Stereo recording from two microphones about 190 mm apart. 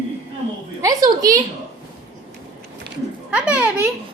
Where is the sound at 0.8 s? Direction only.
20° right (ahead or behind).